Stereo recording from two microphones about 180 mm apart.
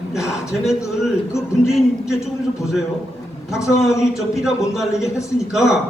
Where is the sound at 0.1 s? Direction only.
Centre (ahead or behind).